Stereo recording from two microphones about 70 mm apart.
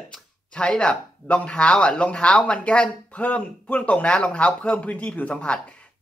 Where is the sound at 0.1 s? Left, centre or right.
Centre.